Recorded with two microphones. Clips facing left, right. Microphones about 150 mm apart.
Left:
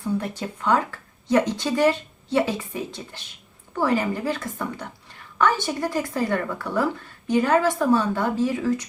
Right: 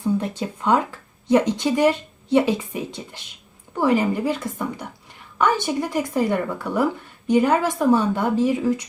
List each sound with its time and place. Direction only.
0.2 s speech: 20° right (ahead or behind)